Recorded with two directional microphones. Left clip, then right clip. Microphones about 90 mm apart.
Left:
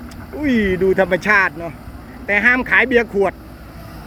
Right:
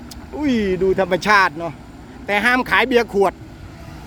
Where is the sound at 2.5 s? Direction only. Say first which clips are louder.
Left 1 dB; 55° right (ahead or behind).